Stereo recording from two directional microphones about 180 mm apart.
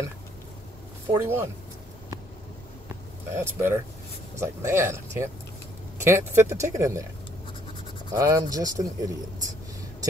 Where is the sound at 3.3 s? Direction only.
15° right (ahead or behind).